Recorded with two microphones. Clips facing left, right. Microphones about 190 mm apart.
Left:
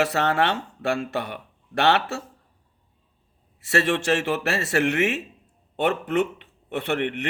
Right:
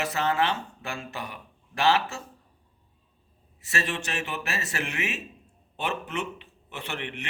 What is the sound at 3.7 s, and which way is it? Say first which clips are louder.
Speech: left 10 dB; 70° left (ahead or behind).